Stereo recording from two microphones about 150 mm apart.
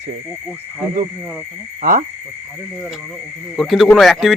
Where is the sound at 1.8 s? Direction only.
70° right (ahead or behind).